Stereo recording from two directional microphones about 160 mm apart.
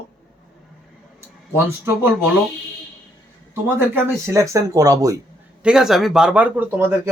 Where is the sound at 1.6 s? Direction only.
15° right (ahead or behind).